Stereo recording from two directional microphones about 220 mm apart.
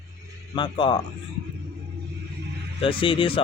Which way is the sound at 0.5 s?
20° left (ahead or behind).